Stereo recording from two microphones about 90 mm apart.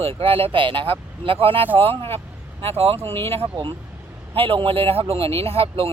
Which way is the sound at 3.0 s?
25° left (ahead or behind).